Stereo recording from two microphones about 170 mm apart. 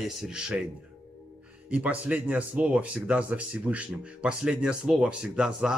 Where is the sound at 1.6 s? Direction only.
10° right (ahead or behind).